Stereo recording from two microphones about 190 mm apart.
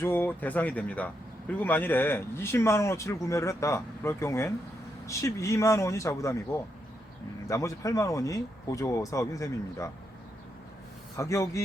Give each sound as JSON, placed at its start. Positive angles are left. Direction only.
{"t": 0.0, "sound": "speech", "side_deg": 10}
{"t": 11.2, "sound": "speech", "side_deg": 15}